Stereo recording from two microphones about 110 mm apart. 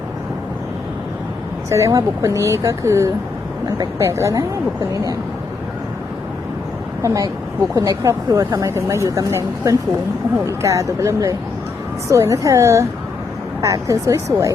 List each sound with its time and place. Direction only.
1.7 s speech: 30° right (ahead or behind)
7.0 s a woman's voice: 30° right (ahead or behind)